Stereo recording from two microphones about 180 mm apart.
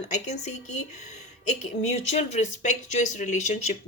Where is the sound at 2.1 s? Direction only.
40° left (ahead or behind).